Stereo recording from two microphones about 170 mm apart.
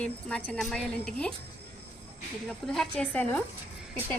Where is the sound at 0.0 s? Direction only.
5° left (ahead or behind).